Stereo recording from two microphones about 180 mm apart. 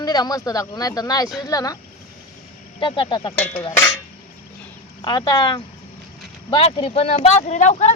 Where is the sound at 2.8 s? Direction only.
25° left (ahead or behind).